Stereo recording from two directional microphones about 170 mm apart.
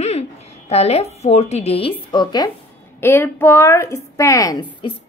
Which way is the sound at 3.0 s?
15° left (ahead or behind).